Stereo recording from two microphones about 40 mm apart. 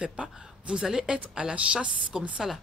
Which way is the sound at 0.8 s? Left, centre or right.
Right.